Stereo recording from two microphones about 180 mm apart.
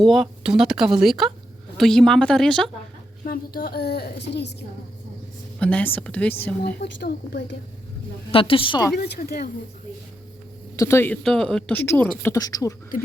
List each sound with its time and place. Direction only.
0.0 s speech: centre (ahead or behind)
3.2 s a woman's voice: 55° left (ahead or behind); by 4.5 s 70° left (ahead or behind)
5.5 s speech: 5° left (ahead or behind)
6.6 s a woman's voice: 60° left (ahead or behind)
8.3 s a woman's voice: 30° left (ahead or behind)
9.0 s a woman's voice: 60° left (ahead or behind)
10.8 s speech: 15° left (ahead or behind)